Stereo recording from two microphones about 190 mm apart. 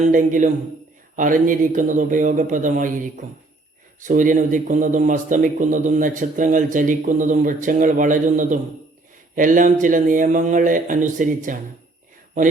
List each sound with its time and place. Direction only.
0.1 s a man's voice: 45° right (ahead or behind)
4.0 s a man's voice: 45° right (ahead or behind)